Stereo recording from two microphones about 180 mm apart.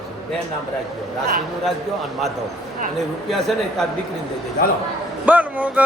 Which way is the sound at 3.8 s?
Centre (ahead or behind).